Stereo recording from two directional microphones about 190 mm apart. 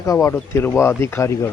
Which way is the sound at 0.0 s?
15° left (ahead or behind).